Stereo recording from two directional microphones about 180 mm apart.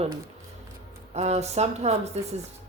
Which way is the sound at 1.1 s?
35° right (ahead or behind).